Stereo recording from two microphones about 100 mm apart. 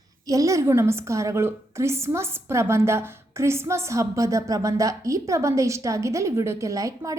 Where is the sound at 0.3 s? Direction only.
35° right (ahead or behind).